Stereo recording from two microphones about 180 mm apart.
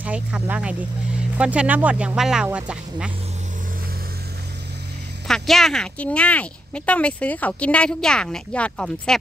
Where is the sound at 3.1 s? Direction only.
35° right (ahead or behind); by 5.2 s 65° right (ahead or behind).